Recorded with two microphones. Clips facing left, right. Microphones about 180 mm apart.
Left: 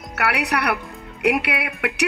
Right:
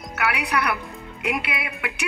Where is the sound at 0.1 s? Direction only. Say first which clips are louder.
Left 2 dB; 70° left (ahead or behind).